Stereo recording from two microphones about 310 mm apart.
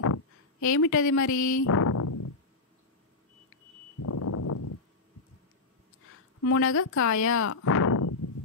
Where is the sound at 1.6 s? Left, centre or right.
Left.